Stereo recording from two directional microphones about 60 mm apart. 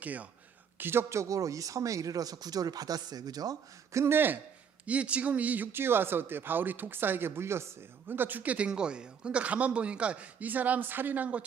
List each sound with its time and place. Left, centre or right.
0.0 s speech: right
0.8 s speech: right
1.1 s speech: right
3.9 s speech: right
4.9 s speech: right
5.7 s speech: right